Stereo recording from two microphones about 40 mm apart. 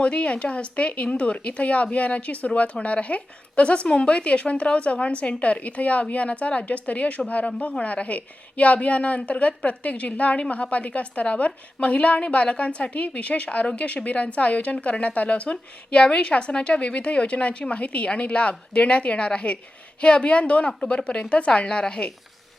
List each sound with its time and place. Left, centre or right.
0.0 s a woman's voice: left